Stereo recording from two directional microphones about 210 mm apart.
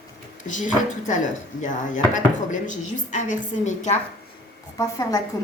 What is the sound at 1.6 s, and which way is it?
Speech, 35° left (ahead or behind).